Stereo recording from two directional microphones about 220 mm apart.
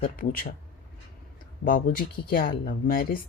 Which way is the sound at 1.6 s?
40° left (ahead or behind).